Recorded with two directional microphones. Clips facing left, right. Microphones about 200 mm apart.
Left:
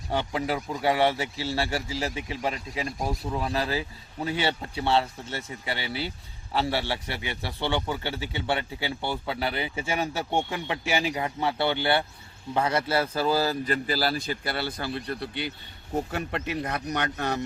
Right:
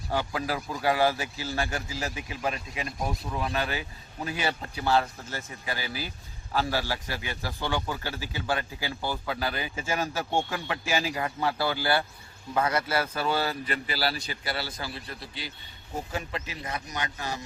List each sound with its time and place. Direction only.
0.1 s a man's voice: 25° left (ahead or behind); by 17.4 s 60° left (ahead or behind)